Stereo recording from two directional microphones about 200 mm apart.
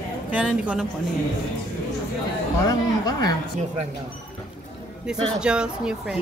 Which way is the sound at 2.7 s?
20° left (ahead or behind).